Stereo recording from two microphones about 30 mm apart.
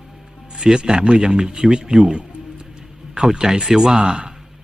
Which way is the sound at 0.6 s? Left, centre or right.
Right.